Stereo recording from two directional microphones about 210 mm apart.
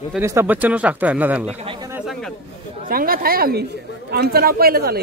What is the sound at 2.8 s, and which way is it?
A man's voice, 45° right (ahead or behind).